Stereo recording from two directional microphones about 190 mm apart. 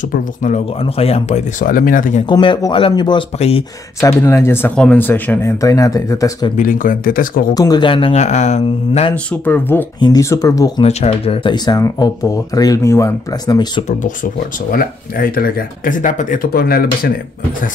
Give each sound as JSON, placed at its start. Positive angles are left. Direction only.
{"t": 0.4, "sound": "speech", "side_deg": 35}
{"t": 2.2, "sound": "speech", "side_deg": 25}
{"t": 4.0, "sound": "speech", "side_deg": 15}
{"t": 6.5, "sound": "speech", "side_deg": 45}
{"t": 7.5, "sound": "speech", "side_deg": 20}
{"t": 9.1, "sound": "speech", "side_deg": 10}
{"t": 9.9, "sound": "speech", "side_deg": 20}
{"t": 10.8, "sound": "speech", "side_deg": 35}
{"t": 14.7, "sound": "speech", "side_deg": 50}